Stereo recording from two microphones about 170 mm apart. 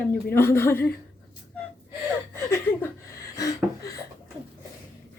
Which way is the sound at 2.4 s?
15° left (ahead or behind).